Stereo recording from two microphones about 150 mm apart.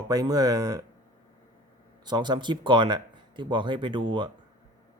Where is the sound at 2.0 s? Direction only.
30° right (ahead or behind).